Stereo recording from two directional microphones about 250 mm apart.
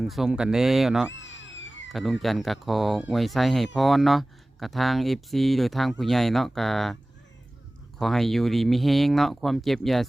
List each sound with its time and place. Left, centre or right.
0.0 s speech: centre
1.1 s a sound: left
1.9 s speech: centre